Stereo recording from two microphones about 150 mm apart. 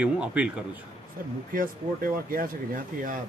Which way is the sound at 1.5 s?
70° right (ahead or behind).